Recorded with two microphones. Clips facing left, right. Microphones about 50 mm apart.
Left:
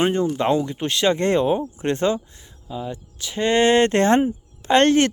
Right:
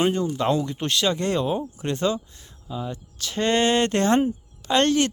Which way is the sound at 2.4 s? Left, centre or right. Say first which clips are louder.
Left 2 dB; centre.